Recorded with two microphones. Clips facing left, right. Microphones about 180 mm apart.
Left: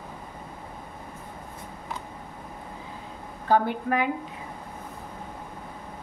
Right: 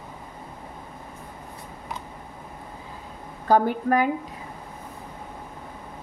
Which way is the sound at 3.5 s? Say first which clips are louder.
Right 3 dB; 40° right (ahead or behind).